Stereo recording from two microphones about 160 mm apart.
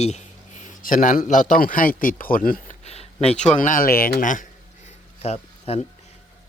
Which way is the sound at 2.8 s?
40° left (ahead or behind).